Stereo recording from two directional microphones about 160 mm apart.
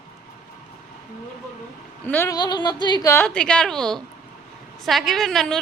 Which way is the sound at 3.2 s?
5° left (ahead or behind).